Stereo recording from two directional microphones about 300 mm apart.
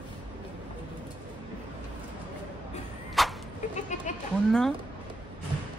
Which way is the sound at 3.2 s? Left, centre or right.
Centre.